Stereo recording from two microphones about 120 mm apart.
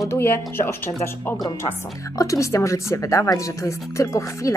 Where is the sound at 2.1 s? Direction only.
25° left (ahead or behind).